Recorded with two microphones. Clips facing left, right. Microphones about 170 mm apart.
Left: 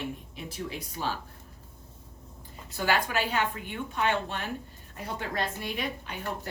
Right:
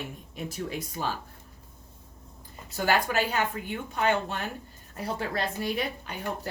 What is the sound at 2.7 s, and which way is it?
Speech, 45° right (ahead or behind).